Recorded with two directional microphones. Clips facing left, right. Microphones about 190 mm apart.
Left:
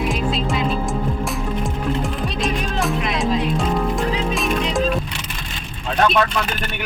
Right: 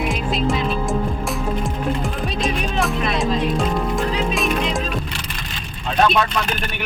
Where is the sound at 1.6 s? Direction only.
Centre (ahead or behind).